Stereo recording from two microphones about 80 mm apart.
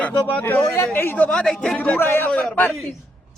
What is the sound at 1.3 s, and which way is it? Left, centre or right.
Speech, centre.